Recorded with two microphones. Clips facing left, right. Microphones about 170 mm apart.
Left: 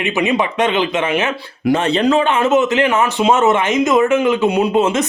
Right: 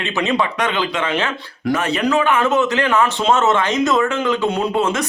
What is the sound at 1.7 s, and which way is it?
A man's voice, 25° left (ahead or behind).